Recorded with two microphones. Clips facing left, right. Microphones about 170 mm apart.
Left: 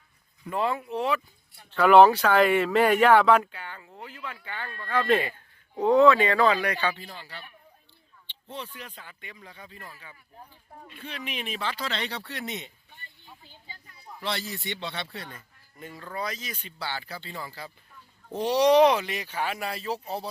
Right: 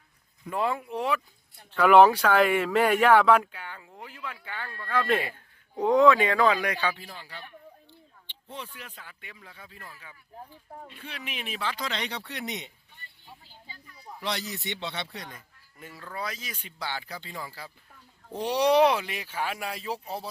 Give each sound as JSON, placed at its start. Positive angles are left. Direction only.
{"t": 0.5, "sound": "speech", "side_deg": -10}
{"t": 11.0, "sound": "speech", "side_deg": -10}
{"t": 14.2, "sound": "speech", "side_deg": -15}